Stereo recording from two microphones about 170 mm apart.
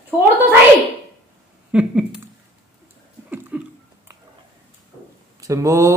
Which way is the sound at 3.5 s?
5° right (ahead or behind).